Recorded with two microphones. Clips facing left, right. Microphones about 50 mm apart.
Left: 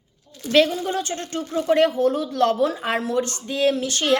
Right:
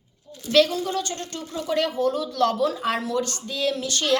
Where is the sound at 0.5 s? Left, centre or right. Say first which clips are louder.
Left 1 dB; left.